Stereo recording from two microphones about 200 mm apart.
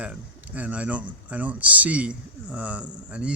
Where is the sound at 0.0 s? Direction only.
5° right (ahead or behind).